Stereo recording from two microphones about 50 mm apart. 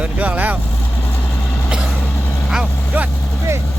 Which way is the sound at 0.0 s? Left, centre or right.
Right.